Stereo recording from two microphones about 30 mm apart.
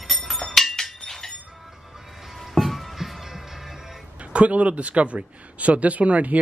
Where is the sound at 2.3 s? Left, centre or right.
Centre.